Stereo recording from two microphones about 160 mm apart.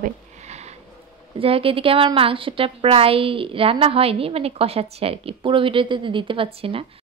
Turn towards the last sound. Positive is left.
turn(degrees=-35)  # may be behind; listen again after turning